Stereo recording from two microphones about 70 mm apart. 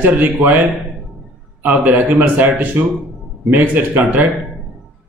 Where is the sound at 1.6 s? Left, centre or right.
Right.